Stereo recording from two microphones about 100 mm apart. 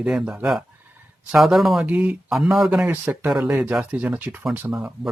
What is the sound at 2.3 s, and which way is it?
Speech, centre (ahead or behind).